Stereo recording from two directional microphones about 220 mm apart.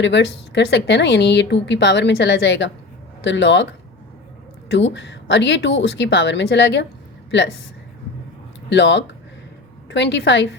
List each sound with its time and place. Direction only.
0.0 s a woman's voice: 55° left (ahead or behind)
4.7 s a woman's voice: 55° left (ahead or behind)
8.7 s a woman's voice: 55° left (ahead or behind)